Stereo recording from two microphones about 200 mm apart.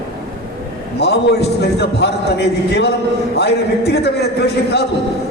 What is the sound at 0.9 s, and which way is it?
A man's voice, 55° left (ahead or behind).